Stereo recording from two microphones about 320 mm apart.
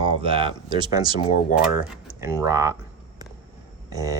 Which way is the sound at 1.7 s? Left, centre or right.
Centre.